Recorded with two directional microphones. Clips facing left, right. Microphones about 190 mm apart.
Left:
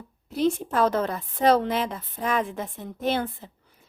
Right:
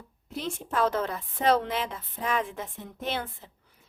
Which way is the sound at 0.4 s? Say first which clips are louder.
Left 6 dB; 40° left (ahead or behind).